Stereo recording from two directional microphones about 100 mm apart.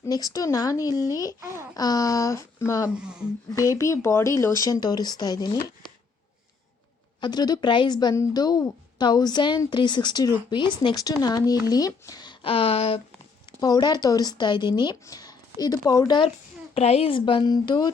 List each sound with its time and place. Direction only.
0.1 s speech: 40° left (ahead or behind)
7.2 s speech: 45° left (ahead or behind); by 13.0 s 70° left (ahead or behind)
13.6 s speech: 40° left (ahead or behind)
15.0 s speech: 40° left (ahead or behind)
16.7 s speech: 90° left; by 17.9 s 45° left (ahead or behind)